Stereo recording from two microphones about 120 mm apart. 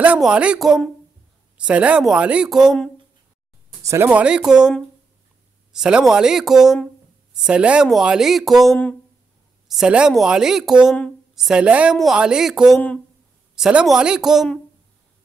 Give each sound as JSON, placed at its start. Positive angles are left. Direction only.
{"t": 0.0, "sound": "speech", "side_deg": -10}
{"t": 3.8, "sound": "speech", "side_deg": -25}
{"t": 4.1, "sound": "speech", "side_deg": -10}